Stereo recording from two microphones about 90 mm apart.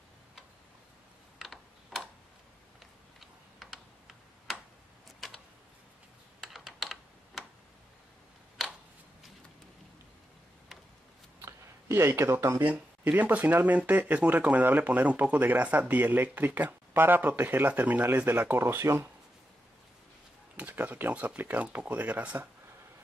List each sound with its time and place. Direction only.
1.4 s computer keyboard: centre (ahead or behind)
2.8 s tick-tock: centre (ahead or behind)
6.4 s computer keyboard: centre (ahead or behind)
11.4 s a sound: 30° right (ahead or behind)
12.6 s speech: 20° right (ahead or behind)
20.5 s speech: 20° right (ahead or behind)